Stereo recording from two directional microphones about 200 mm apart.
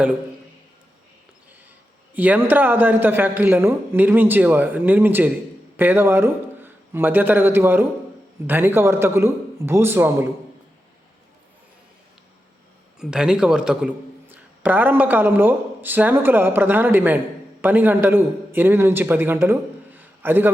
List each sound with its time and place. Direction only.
2.1 s a man's voice: 10° right (ahead or behind)
13.0 s a man's voice: 5° right (ahead or behind)